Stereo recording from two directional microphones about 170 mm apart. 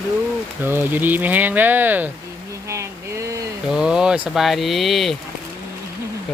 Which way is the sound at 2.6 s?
15° right (ahead or behind).